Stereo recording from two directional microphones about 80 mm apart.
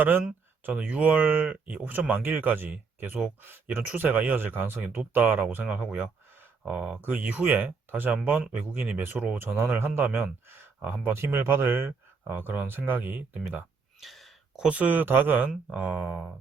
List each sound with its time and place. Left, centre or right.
0.0 s speech: right
14.0 s speech: centre